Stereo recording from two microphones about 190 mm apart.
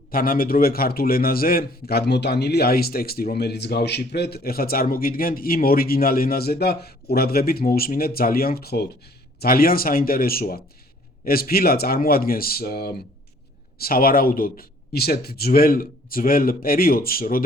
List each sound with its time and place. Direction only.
0.1 s a man's voice: 50° left (ahead or behind)